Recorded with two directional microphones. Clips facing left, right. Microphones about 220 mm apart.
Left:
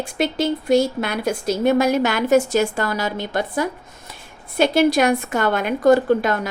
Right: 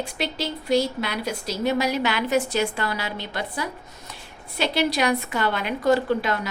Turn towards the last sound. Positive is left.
turn(degrees=50)  # may be behind; listen again after turning